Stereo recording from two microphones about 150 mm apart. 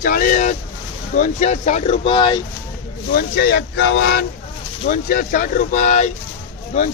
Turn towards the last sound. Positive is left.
turn(degrees=50)  # may be behind; listen again after turning